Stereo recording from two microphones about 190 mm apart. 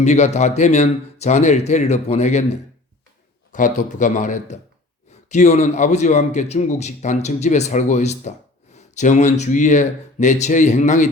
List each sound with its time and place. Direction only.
0.0 s a man's voice: 35° left (ahead or behind)